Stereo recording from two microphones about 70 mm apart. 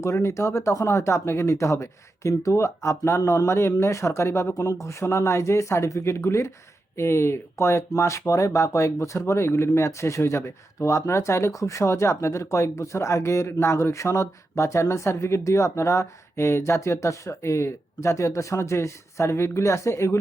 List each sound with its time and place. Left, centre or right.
0.0 s speech: left